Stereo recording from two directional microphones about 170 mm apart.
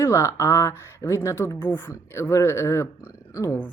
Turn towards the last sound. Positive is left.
turn(degrees=15)  # may be behind; listen again after turning